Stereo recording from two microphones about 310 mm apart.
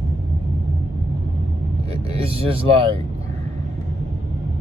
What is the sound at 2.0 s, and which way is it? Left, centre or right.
Vehicle, centre.